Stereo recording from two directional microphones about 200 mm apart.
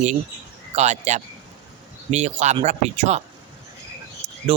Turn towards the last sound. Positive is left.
turn(degrees=-15)  # may be behind; listen again after turning